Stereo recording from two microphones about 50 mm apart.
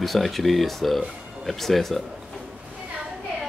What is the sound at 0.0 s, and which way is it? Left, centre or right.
Speech, centre.